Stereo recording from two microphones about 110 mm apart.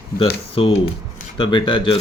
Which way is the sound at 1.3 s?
45° left (ahead or behind).